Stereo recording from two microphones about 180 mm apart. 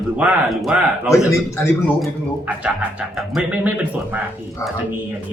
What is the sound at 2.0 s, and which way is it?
A man's voice, 5° right (ahead or behind).